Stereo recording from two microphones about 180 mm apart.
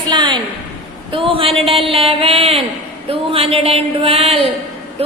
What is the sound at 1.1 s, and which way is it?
A woman's voice, 30° right (ahead or behind).